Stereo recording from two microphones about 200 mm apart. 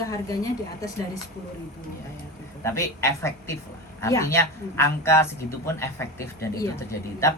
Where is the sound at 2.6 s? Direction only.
15° left (ahead or behind).